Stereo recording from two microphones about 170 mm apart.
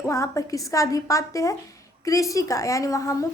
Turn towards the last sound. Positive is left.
turn(degrees=20)  # may be behind; listen again after turning